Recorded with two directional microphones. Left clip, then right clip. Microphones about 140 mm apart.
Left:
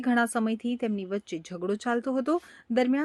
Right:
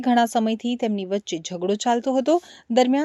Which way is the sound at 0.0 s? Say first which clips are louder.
Right 7 dB; 25° right (ahead or behind).